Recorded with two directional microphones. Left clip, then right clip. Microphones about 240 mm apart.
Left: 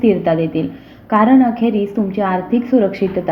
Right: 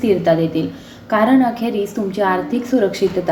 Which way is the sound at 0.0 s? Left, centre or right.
Left.